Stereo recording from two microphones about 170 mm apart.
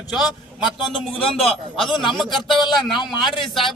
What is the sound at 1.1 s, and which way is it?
Speech, 35° left (ahead or behind).